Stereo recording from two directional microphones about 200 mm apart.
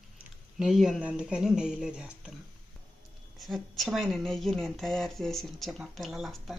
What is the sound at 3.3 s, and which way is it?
Speech, centre (ahead or behind).